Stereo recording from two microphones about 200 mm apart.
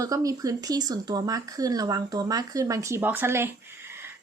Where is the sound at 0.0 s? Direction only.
15° right (ahead or behind).